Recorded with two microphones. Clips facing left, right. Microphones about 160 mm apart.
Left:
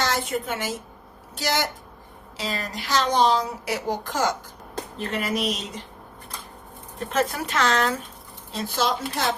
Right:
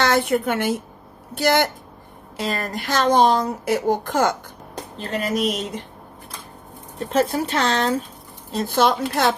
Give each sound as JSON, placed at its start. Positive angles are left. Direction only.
{"t": 0.0, "sound": "a woman's voice", "side_deg": -60}
{"t": 4.9, "sound": "speech", "side_deg": -35}
{"t": 7.0, "sound": "speech", "side_deg": -30}
{"t": 8.5, "sound": "speech", "side_deg": -55}